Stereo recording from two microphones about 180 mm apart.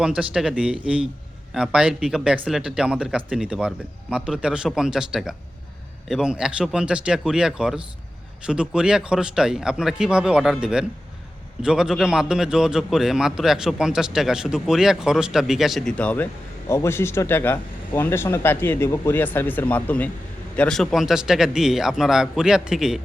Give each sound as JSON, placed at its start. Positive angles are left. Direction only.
{"t": 0.0, "sound": "a man's voice", "side_deg": -5}